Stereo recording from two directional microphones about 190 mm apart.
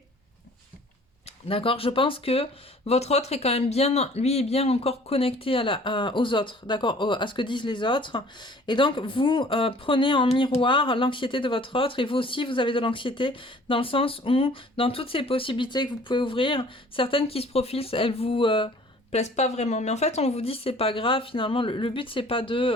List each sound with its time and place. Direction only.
1.5 s speech: 30° left (ahead or behind)